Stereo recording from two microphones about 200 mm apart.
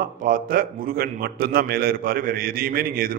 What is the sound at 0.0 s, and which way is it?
A man's voice, 45° right (ahead or behind).